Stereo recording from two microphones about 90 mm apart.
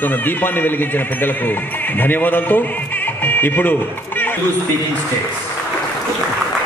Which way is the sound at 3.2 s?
20° left (ahead or behind).